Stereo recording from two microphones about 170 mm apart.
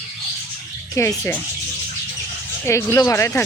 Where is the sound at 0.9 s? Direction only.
15° left (ahead or behind).